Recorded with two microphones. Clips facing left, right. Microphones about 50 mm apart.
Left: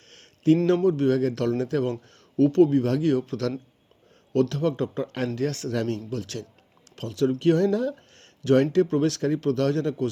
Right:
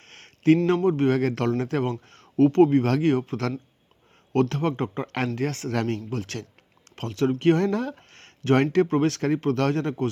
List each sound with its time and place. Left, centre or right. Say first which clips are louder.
0.1 s a sound: right 1 dB; right
0.6 s a man's voice: even; right
5.0 s a man's voice: right 1 dB; right
5.3 s a man's voice: even; right